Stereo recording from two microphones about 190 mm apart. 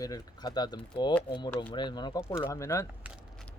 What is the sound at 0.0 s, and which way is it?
Speech, 20° left (ahead or behind).